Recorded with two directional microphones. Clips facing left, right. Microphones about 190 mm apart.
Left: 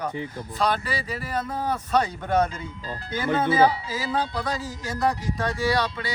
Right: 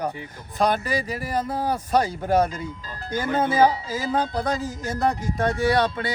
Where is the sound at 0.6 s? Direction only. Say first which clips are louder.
Right 3 dB; 45° right (ahead or behind).